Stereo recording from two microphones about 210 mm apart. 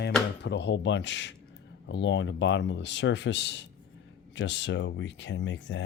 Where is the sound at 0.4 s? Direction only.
55° left (ahead or behind).